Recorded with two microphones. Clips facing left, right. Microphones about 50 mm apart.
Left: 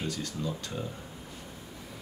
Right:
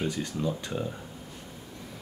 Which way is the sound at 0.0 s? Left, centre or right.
Right.